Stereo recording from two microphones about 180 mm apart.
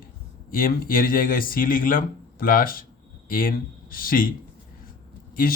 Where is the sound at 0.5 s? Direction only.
50° left (ahead or behind).